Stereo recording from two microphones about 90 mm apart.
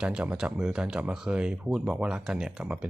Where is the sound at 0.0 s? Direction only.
15° right (ahead or behind).